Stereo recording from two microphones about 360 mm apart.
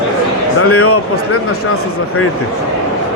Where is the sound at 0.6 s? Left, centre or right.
Left.